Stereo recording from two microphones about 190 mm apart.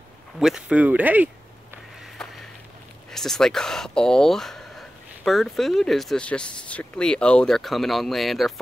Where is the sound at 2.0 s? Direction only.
Centre (ahead or behind).